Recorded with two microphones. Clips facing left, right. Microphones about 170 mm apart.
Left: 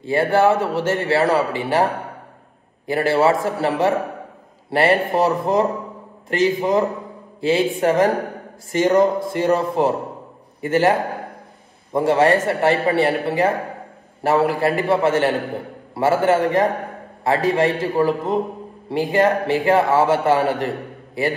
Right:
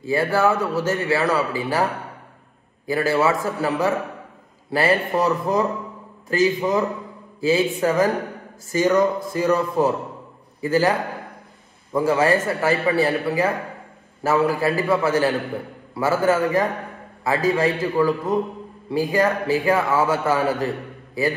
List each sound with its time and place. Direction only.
0.0 s a man's voice: 25° left (ahead or behind)
2.9 s a man's voice: 25° left (ahead or behind)